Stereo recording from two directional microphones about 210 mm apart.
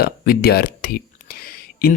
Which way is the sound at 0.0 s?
45° left (ahead or behind).